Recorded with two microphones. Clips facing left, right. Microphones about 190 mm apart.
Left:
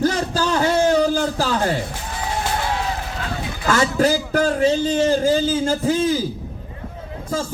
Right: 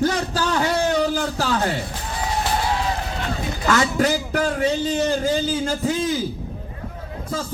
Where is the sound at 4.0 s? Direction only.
35° left (ahead or behind).